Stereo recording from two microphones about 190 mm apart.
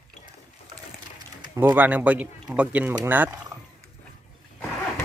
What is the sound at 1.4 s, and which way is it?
Speech, 15° right (ahead or behind).